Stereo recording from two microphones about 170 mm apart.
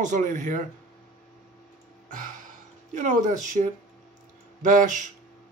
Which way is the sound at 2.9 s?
45° right (ahead or behind).